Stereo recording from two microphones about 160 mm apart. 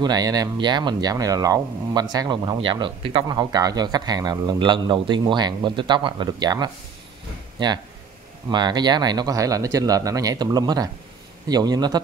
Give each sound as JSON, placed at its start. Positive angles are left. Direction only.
{"t": 0.0, "sound": "speech", "side_deg": -25}